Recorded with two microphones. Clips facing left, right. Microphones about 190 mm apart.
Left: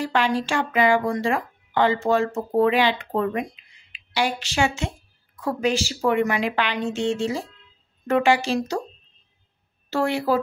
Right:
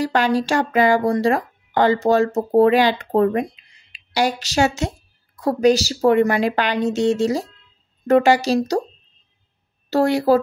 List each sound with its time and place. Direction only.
0.0 s speech: 40° right (ahead or behind)
9.8 s speech: 40° right (ahead or behind)